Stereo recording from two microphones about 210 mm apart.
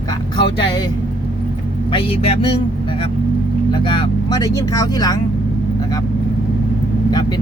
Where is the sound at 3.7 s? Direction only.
25° left (ahead or behind).